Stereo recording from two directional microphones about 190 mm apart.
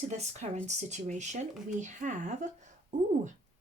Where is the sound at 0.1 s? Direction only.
35° right (ahead or behind).